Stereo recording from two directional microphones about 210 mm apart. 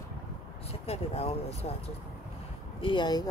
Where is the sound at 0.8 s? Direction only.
30° left (ahead or behind).